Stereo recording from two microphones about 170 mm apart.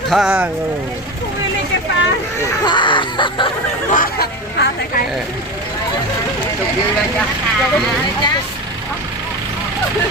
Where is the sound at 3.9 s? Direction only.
60° left (ahead or behind).